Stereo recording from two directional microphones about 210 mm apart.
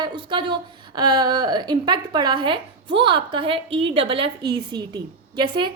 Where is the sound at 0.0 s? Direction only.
25° right (ahead or behind).